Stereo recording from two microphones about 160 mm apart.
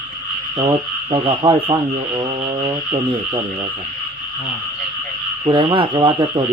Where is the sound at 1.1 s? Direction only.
35° right (ahead or behind).